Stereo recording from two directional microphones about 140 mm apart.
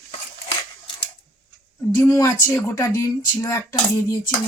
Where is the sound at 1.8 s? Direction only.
20° left (ahead or behind).